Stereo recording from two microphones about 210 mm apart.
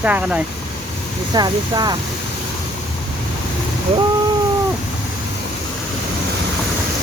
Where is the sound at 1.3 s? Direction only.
20° right (ahead or behind).